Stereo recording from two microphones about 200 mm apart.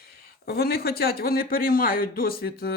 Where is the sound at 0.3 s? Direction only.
50° left (ahead or behind).